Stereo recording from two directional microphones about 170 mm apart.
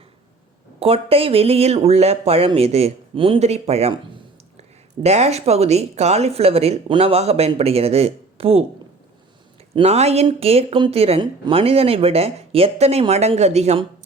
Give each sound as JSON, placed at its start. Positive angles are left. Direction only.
{"t": 0.8, "sound": "speech", "side_deg": -35}
{"t": 5.0, "sound": "speech", "side_deg": -40}
{"t": 9.7, "sound": "speech", "side_deg": -35}